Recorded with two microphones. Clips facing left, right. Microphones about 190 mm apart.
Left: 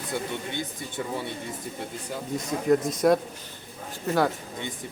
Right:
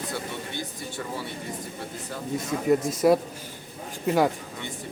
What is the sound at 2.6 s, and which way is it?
A man's voice, 5° right (ahead or behind).